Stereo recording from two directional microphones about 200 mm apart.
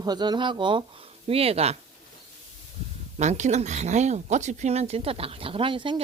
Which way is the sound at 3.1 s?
35° right (ahead or behind).